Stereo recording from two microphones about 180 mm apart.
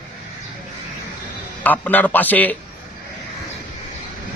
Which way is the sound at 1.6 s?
10° left (ahead or behind).